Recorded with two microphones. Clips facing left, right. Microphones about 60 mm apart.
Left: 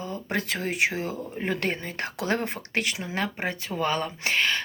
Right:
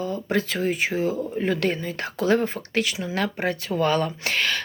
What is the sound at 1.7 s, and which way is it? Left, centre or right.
Speech, left.